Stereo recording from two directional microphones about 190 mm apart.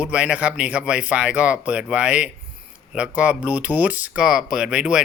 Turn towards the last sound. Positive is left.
turn(degrees=-5)  # may be behind; listen again after turning